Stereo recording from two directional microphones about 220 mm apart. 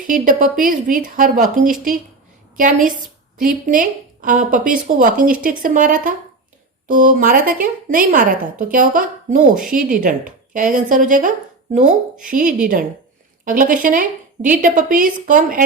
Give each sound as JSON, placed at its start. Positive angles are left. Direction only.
{"t": 0.1, "sound": "a woman's voice", "side_deg": -35}